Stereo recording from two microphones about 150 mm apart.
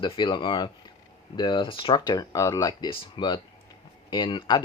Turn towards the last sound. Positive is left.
turn(degrees=30)  # may be behind; listen again after turning